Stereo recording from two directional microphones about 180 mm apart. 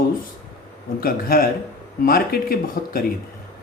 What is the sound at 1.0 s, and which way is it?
Speech, 55° left (ahead or behind).